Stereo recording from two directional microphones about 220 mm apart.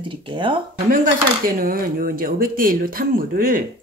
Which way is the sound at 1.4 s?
40° right (ahead or behind).